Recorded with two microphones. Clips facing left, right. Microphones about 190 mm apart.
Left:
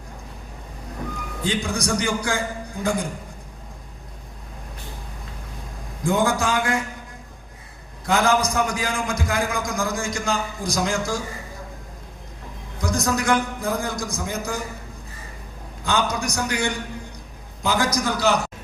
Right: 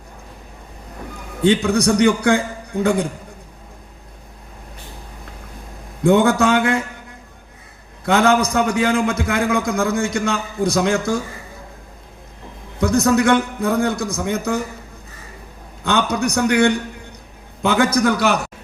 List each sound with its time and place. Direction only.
1.4 s a man's voice: 65° right (ahead or behind)
6.0 s a man's voice: 60° right (ahead or behind)
8.0 s a man's voice: 60° right (ahead or behind)
12.8 s a man's voice: 60° right (ahead or behind)
15.8 s a man's voice: 60° right (ahead or behind)